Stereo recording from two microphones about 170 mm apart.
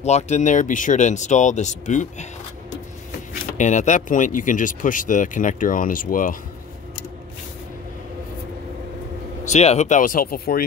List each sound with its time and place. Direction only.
0.0 s speech: 40° left (ahead or behind)
3.5 s speech: 45° left (ahead or behind)
9.5 s speech: 40° left (ahead or behind); by 10.6 s 60° left (ahead or behind)